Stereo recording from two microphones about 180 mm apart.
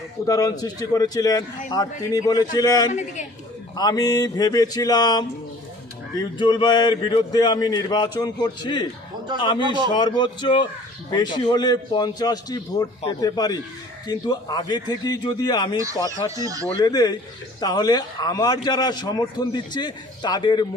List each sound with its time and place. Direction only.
0.3 s a man's voice: 20° left (ahead or behind)
9.6 s a man's voice: 25° right (ahead or behind)
9.9 s a man's voice: 25° left (ahead or behind)
16.3 s a man's voice: 20° right (ahead or behind)
16.8 s a man's voice: 20° left (ahead or behind)